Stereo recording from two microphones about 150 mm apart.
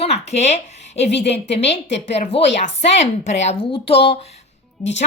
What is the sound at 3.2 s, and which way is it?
Speech, 50° left (ahead or behind).